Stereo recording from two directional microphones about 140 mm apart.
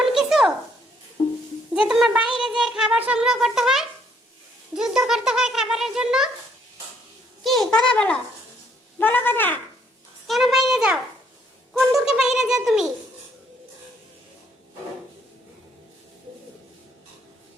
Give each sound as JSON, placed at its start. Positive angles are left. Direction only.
{"t": 0.0, "sound": "a sound", "side_deg": 0}
{"t": 1.2, "sound": "music", "side_deg": 35}
{"t": 1.9, "sound": "speech", "side_deg": -5}
{"t": 2.4, "sound": "a sound", "side_deg": -5}
{"t": 4.7, "sound": "a child's voice", "side_deg": -5}
{"t": 7.4, "sound": "a child's voice", "side_deg": 0}
{"t": 10.2, "sound": "a child's voice", "side_deg": 0}